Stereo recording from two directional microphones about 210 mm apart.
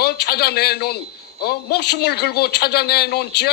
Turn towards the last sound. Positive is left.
turn(degrees=50)  # may be behind; listen again after turning